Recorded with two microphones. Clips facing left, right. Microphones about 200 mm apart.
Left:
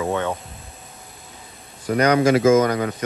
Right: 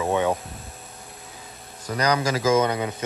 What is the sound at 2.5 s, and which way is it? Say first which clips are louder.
Speech: left 4 dB; 25° right (ahead or behind).